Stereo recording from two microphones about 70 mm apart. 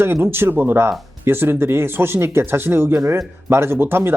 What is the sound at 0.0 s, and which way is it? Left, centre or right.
Speech, right.